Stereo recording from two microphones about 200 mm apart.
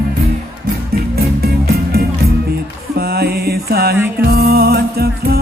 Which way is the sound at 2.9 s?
50° right (ahead or behind).